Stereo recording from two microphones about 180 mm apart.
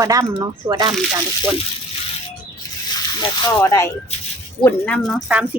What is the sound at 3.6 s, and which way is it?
Speech, 15° left (ahead or behind).